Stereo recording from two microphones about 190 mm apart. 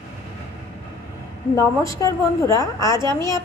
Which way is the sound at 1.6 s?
15° left (ahead or behind).